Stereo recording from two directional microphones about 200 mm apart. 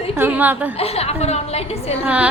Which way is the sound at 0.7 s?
30° left (ahead or behind).